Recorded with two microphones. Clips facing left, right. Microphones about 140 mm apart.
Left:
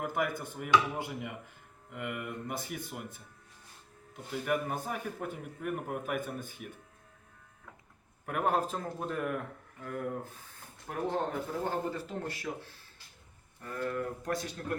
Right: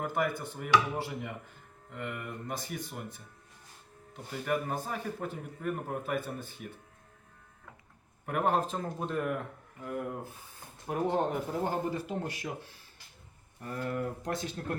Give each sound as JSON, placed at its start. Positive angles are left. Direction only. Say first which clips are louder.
{"t": 0.0, "sound": "speech", "louder": "right 1 dB", "side_deg": 5}
{"t": 4.3, "sound": "speech", "louder": "even", "side_deg": 5}
{"t": 8.3, "sound": "speech", "louder": "right 1 dB", "side_deg": 0}
{"t": 9.8, "sound": "speech", "louder": "even", "side_deg": -15}
{"t": 13.6, "sound": "speech", "louder": "even", "side_deg": -25}